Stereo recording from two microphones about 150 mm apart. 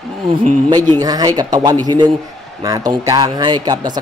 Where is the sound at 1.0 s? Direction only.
25° right (ahead or behind).